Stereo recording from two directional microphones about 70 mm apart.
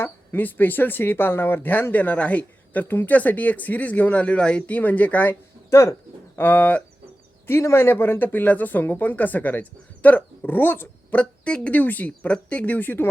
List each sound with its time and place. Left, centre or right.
0.0 s speech: left
5.3 s a sound: left
6.4 s speech: left
7.4 s speech: left
11.2 s speech: centre